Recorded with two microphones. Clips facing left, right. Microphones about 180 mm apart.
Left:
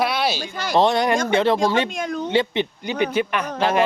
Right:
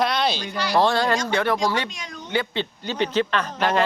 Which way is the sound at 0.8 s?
20° left (ahead or behind).